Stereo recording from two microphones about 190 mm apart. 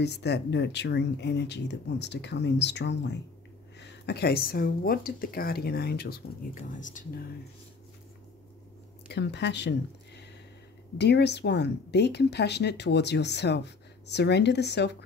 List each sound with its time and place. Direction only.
0.0 s speech: 60° left (ahead or behind)
6.8 s speech: 45° left (ahead or behind)
9.1 s speech: 65° left (ahead or behind)